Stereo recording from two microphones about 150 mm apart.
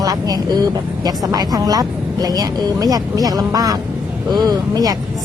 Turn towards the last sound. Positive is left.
turn(degrees=-25)  # may be behind; listen again after turning